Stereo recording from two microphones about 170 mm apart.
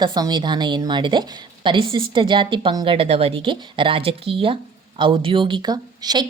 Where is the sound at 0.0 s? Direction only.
25° right (ahead or behind).